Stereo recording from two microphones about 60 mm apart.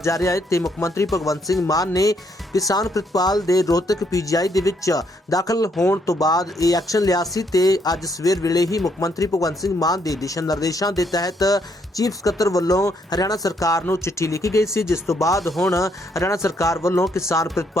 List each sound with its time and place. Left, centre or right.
0.0 s speech: left
1.1 s speech: left
1.6 s speech: left
4.1 s speech: left
9.0 s speech: left
13.8 s speech: left